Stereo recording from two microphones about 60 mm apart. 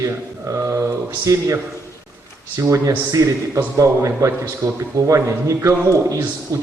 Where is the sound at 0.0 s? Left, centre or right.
Right.